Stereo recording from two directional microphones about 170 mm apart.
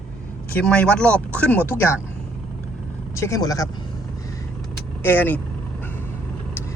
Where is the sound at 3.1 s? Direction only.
20° left (ahead or behind).